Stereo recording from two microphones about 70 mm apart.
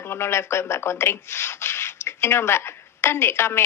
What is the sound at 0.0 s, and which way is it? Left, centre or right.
Speech, left.